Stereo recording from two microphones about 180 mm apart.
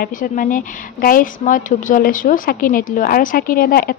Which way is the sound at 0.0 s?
50° left (ahead or behind).